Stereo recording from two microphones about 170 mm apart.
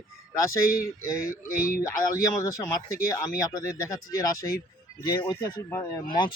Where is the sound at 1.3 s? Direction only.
55° left (ahead or behind).